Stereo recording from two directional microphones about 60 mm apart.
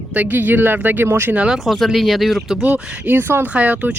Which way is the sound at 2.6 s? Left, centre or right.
Right.